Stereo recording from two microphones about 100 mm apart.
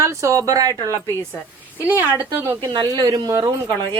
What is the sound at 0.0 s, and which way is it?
Speech, 30° right (ahead or behind).